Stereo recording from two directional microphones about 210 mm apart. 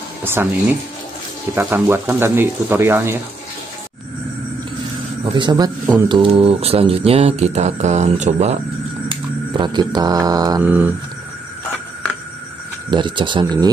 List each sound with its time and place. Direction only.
0.2 s speech: 10° right (ahead or behind)
1.5 s speech: 10° right (ahead or behind)
5.2 s mantra: 20° right (ahead or behind)
9.1 s mantra: 20° right (ahead or behind)
12.9 s mantra: 20° right (ahead or behind)